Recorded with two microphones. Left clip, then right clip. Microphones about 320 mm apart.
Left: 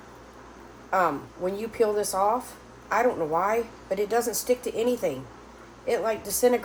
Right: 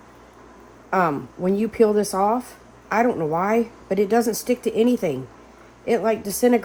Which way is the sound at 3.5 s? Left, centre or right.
Right.